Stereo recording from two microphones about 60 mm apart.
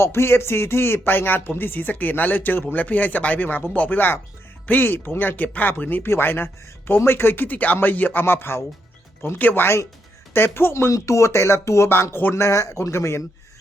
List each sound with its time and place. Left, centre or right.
0.0 s speech: left
5.4 s speech: left
8.2 s speech: left
9.4 s speech: left
10.3 s speech: left
10.9 s speech: left